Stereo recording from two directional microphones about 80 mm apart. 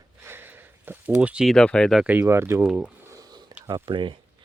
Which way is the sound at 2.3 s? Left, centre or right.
Right.